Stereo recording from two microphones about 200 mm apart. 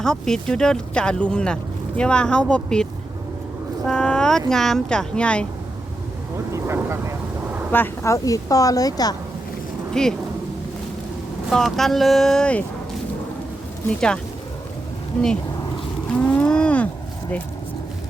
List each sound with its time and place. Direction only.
0.0 s speech: 5° left (ahead or behind)
3.8 s speech: 5° left (ahead or behind)
6.5 s vehicle: 10° right (ahead or behind)
7.7 s speech: 10° left (ahead or behind)
9.9 s speech: 5° left (ahead or behind)
11.4 s speech: centre (ahead or behind)
16.1 s cattle: 5° left (ahead or behind)